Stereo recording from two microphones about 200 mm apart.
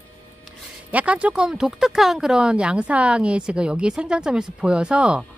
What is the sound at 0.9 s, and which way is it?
Speech, 5° right (ahead or behind).